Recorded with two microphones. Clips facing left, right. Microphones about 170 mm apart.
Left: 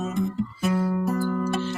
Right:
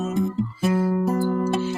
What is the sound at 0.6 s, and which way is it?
Music, 30° right (ahead or behind).